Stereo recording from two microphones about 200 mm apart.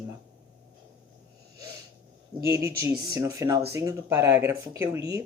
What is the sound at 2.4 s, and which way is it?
Speech, 15° right (ahead or behind).